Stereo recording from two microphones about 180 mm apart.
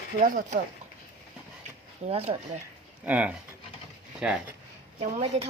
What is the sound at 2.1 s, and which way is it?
Speech, 35° right (ahead or behind).